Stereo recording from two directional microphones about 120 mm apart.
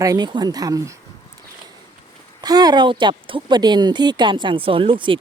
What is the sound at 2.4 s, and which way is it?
Speech, 35° right (ahead or behind).